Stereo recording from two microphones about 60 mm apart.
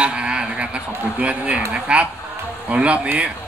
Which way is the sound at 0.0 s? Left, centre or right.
Centre.